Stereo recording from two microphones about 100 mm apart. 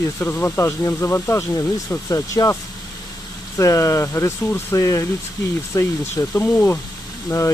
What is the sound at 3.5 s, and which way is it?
Speech, 30° left (ahead or behind).